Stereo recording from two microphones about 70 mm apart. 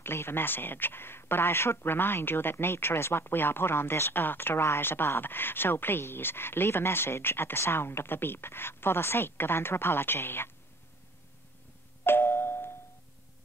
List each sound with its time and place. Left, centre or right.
0.0 s speech: left
12.0 s doorbell: left